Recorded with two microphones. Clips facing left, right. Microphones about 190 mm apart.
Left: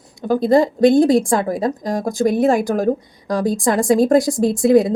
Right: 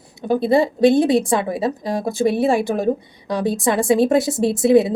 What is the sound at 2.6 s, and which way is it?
Speech, centre (ahead or behind).